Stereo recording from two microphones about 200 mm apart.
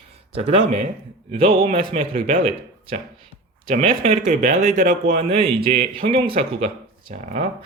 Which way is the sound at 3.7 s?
35° right (ahead or behind).